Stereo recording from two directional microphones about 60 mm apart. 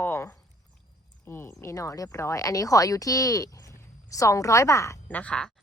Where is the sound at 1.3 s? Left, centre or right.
Left.